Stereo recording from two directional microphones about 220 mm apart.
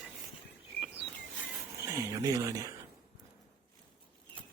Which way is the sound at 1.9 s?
15° right (ahead or behind).